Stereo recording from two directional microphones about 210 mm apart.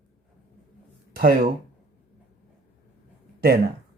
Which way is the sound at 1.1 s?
45° right (ahead or behind).